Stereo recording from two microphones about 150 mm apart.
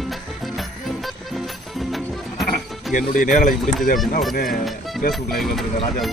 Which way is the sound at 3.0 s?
60° left (ahead or behind).